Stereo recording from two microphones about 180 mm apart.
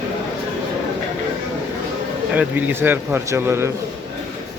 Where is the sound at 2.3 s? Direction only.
10° right (ahead or behind).